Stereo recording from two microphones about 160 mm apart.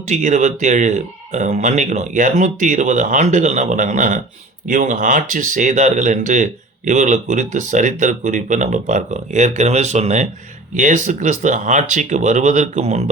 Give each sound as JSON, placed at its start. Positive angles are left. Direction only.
{"t": 0.1, "sound": "speech", "side_deg": -50}